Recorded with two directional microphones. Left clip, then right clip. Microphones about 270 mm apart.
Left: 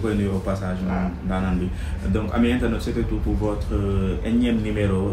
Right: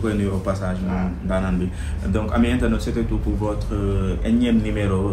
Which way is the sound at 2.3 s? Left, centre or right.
Centre.